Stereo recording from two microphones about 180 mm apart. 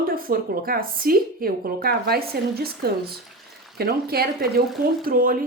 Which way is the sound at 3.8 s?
60° right (ahead or behind).